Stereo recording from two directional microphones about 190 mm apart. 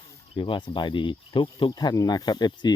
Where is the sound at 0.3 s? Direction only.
25° left (ahead or behind).